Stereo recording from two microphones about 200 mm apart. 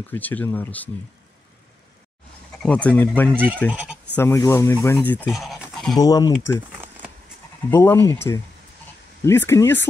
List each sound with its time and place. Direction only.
0.1 s speech: 10° left (ahead or behind)
2.6 s speech: 5° left (ahead or behind)
3.7 s bleat: 5° right (ahead or behind)
4.1 s speech: 15° left (ahead or behind)
5.2 s pant: centre (ahead or behind)
5.9 s speech: 15° left (ahead or behind)
7.7 s speech: 10° left (ahead or behind)